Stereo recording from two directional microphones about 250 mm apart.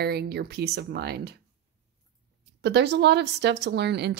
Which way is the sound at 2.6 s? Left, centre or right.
Right.